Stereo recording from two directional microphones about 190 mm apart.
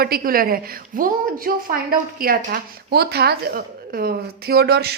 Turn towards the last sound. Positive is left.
turn(degrees=-55)  # may be behind; listen again after turning